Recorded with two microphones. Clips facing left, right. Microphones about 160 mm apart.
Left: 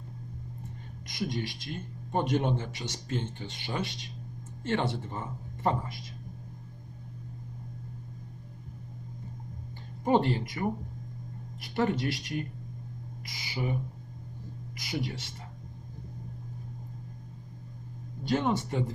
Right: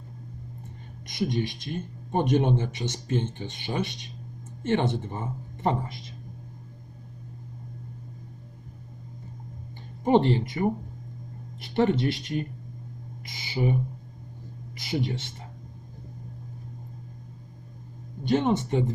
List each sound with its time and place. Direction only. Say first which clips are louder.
1.0 s speech: right 6 dB; 20° right (ahead or behind)
10.0 s speech: right 4 dB; 20° right (ahead or behind)
14.8 s speech: right 5 dB; 25° right (ahead or behind)
18.2 s speech: right 4 dB; 20° right (ahead or behind)